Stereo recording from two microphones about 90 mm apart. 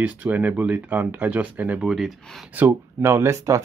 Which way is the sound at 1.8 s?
5° right (ahead or behind).